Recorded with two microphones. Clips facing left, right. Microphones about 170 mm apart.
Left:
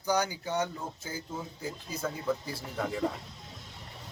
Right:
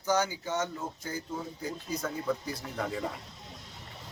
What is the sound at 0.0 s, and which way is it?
Speech, 15° left (ahead or behind).